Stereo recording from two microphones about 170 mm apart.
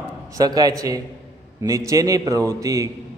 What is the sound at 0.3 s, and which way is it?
A man's voice, 20° right (ahead or behind).